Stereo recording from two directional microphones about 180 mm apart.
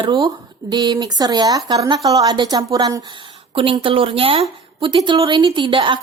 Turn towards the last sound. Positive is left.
turn(degrees=-25)  # may be behind; listen again after turning